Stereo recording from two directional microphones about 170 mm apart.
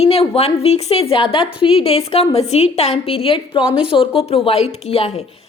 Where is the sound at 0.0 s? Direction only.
35° left (ahead or behind).